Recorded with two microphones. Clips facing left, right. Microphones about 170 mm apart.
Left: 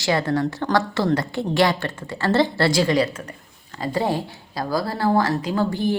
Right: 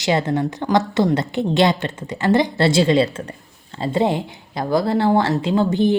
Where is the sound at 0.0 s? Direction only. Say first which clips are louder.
Right 2 dB; 20° right (ahead or behind).